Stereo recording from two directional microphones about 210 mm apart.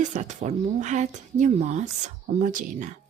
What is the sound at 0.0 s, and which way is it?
Speech, 35° right (ahead or behind).